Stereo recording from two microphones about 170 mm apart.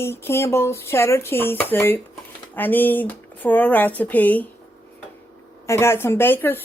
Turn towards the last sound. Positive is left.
turn(degrees=10)  # may be behind; listen again after turning